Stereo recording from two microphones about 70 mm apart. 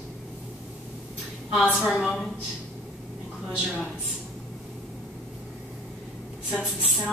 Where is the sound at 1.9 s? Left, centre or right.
Centre.